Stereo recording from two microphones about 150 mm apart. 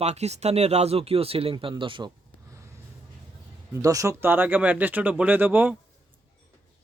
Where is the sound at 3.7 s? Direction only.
20° right (ahead or behind).